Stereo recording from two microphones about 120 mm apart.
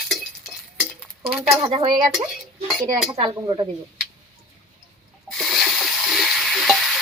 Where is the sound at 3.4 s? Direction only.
40° right (ahead or behind).